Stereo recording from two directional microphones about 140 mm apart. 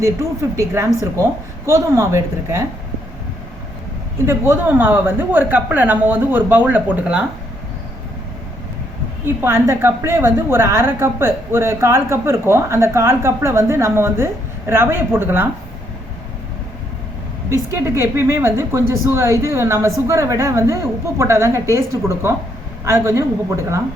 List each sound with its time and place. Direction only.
0.0 s a woman's voice: 20° right (ahead or behind)
4.3 s a woman's voice: 15° right (ahead or behind)
9.2 s a woman's voice: 15° right (ahead or behind)
17.5 s a woman's voice: 20° right (ahead or behind)